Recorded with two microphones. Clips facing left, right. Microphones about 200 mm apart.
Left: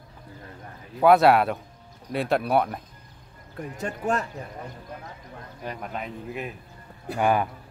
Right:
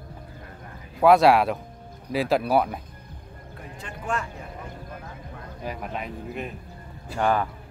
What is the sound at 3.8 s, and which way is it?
Speech, 40° left (ahead or behind).